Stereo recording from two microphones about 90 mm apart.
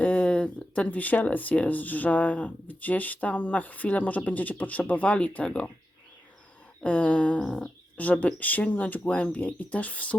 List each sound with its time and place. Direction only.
0.0 s speech: 15° left (ahead or behind)
6.8 s speech: 15° left (ahead or behind)